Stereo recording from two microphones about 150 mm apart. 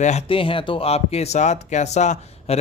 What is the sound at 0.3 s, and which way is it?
Speech, 35° left (ahead or behind).